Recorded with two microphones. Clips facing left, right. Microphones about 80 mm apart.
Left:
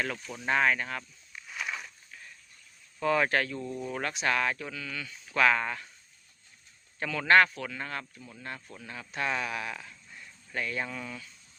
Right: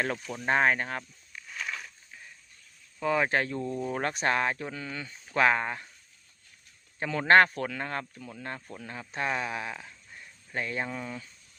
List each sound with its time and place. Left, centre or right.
0.3 s speech: right
1.5 s a sound: centre
3.0 s speech: centre
3.5 s speech: right
7.0 s speech: right
8.2 s speech: right
8.4 s speech: right